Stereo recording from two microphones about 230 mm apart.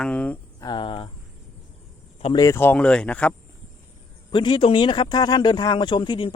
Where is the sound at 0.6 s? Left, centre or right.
Left.